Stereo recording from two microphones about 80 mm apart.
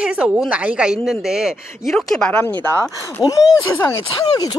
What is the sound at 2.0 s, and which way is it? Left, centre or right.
Speech, centre.